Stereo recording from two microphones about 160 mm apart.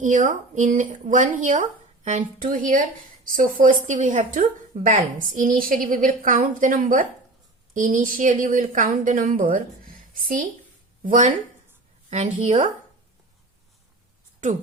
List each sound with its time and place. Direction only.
0.0 s a woman's voice: 55° right (ahead or behind)
11.1 s speech: 50° right (ahead or behind)